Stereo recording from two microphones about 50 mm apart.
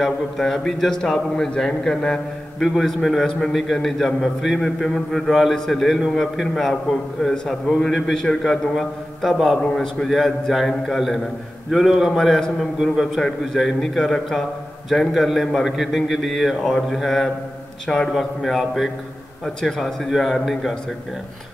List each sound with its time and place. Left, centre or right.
0.0 s a man's voice: centre
2.6 s a man's voice: centre
9.6 s a man's voice: centre
10.0 s a man's voice: centre
13.2 s a man's voice: centre
18.1 s a man's voice: centre